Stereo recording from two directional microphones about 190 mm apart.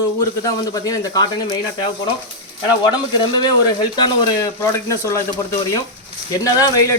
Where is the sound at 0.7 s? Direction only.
20° left (ahead or behind).